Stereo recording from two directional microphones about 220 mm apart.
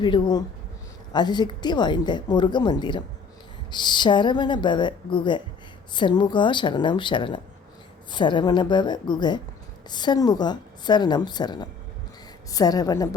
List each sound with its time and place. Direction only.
0.0 s a woman's voice: 20° left (ahead or behind)